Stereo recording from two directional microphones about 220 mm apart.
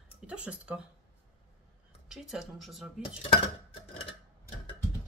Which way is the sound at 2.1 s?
Centre (ahead or behind).